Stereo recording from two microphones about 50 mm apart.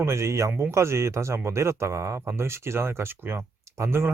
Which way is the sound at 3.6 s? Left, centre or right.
Right.